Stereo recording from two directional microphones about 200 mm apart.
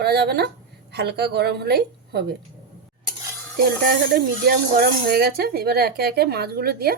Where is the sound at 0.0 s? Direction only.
55° right (ahead or behind).